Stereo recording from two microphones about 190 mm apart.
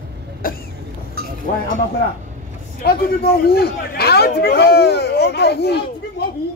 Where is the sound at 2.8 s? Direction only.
55° left (ahead or behind).